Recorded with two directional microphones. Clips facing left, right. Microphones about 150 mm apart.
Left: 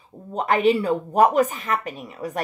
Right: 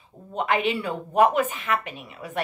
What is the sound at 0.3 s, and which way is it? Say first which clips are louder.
Speech: left 5 dB; 40° left (ahead or behind).